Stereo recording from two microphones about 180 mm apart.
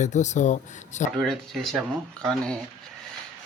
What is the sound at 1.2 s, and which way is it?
Speech, centre (ahead or behind).